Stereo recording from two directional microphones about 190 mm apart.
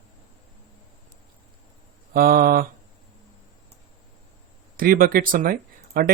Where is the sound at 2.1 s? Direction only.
50° right (ahead or behind).